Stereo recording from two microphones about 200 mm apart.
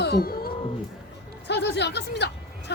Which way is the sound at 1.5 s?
60° left (ahead or behind).